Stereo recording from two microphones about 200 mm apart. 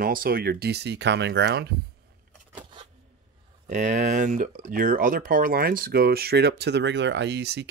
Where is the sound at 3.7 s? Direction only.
40° right (ahead or behind).